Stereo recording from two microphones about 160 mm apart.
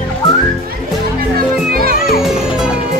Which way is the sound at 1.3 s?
70° right (ahead or behind).